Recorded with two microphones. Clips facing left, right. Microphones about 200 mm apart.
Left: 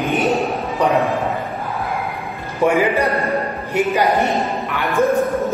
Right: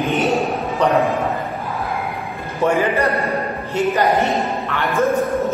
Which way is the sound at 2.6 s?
15° left (ahead or behind).